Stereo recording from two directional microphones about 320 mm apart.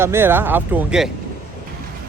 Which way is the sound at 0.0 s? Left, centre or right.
Centre.